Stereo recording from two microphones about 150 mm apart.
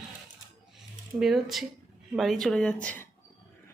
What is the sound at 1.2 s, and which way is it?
Speech, centre (ahead or behind).